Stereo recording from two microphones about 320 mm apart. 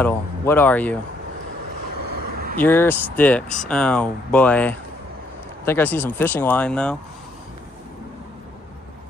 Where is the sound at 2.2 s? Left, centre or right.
Right.